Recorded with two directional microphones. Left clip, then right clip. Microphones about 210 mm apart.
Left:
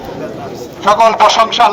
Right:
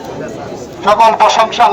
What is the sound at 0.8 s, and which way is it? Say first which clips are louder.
Speech: even; 20° left (ahead or behind).